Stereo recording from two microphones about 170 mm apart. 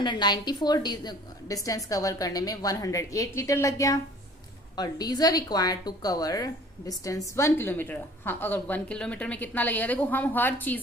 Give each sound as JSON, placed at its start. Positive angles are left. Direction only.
{"t": 0.0, "sound": "a woman's voice", "side_deg": 25}